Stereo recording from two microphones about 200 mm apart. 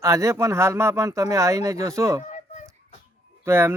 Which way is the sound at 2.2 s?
40° left (ahead or behind).